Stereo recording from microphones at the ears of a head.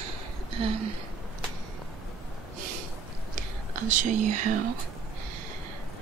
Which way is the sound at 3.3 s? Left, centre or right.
Right.